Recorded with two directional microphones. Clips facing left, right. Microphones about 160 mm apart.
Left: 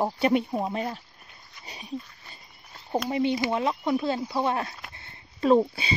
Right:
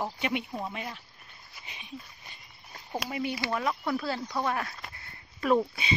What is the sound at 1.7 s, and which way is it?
Dog, 35° left (ahead or behind).